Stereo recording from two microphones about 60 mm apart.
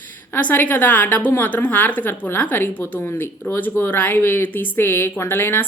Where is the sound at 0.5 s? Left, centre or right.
Left.